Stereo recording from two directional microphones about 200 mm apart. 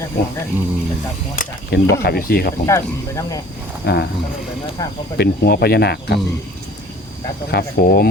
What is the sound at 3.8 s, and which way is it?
Speech, 55° left (ahead or behind).